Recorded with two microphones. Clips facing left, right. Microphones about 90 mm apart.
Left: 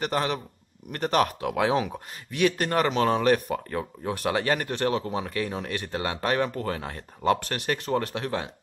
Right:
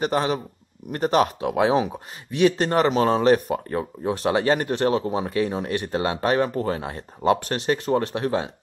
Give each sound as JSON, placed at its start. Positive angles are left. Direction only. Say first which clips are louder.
{"t": 0.0, "sound": "speech", "louder": "right 4 dB", "side_deg": -20}